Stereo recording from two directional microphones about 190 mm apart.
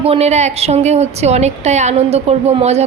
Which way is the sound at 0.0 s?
35° right (ahead or behind).